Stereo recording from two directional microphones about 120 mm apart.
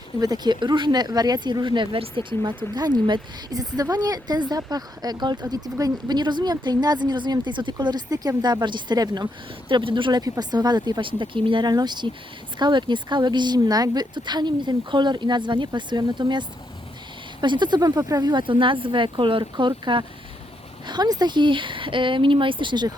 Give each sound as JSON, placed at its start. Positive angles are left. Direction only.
{"t": 0.2, "sound": "speech", "side_deg": -35}